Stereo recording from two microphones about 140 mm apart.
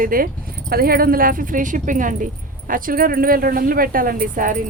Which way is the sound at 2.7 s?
85° right.